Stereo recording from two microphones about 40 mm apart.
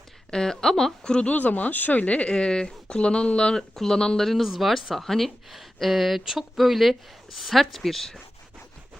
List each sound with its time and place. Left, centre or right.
0.3 s a woman's voice: centre
1.3 s speech: left
2.0 s speech: left
4.2 s speech: centre